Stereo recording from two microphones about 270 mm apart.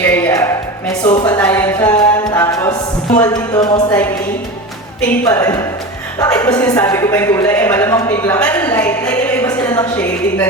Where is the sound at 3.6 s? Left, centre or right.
Centre.